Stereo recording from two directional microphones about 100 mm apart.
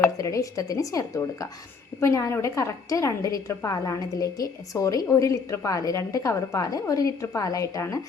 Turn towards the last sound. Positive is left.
turn(degrees=35)  # may be behind; listen again after turning